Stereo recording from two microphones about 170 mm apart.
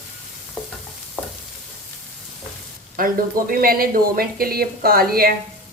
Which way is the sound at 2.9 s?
55° right (ahead or behind).